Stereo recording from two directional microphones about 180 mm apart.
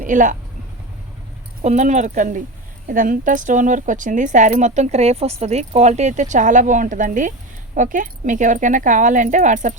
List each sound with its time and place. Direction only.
0.0 s speech: 45° right (ahead or behind)
1.6 s speech: 40° right (ahead or behind)